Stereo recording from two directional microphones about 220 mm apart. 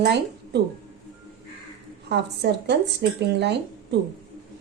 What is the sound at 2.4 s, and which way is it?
A woman's voice, 50° right (ahead or behind).